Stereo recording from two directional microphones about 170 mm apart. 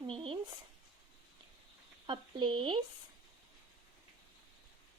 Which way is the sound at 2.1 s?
30° right (ahead or behind).